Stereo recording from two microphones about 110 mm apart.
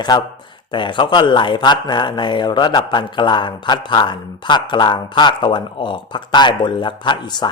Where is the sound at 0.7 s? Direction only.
45° left (ahead or behind).